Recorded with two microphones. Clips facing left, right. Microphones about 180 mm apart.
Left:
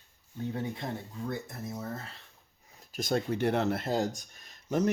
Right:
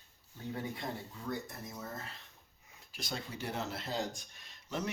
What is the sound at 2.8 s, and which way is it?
Speech, 45° left (ahead or behind).